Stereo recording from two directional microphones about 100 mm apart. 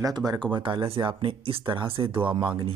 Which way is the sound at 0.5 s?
55° right (ahead or behind).